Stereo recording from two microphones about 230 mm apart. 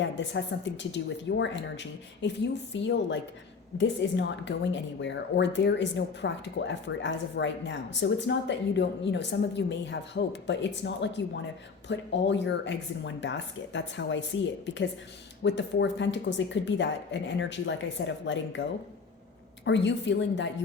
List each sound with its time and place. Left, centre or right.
0.0 s speech: left
19.6 s speech: left